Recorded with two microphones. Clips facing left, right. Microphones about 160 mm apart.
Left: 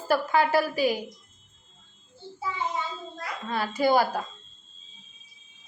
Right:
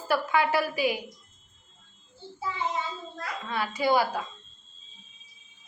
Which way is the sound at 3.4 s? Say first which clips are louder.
Left 2 dB; 40° left (ahead or behind).